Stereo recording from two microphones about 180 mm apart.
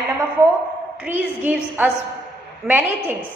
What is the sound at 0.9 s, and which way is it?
A woman's voice, 10° right (ahead or behind).